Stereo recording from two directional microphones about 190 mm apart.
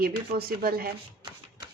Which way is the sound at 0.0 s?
55° right (ahead or behind).